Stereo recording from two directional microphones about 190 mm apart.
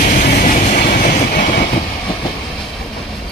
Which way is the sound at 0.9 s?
55° left (ahead or behind).